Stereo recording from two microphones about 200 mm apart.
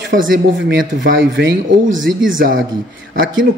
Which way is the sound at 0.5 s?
65° right (ahead or behind).